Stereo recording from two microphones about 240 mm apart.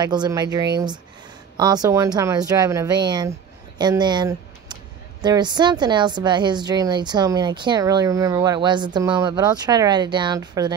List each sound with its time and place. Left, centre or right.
0.0 s a woman's voice: centre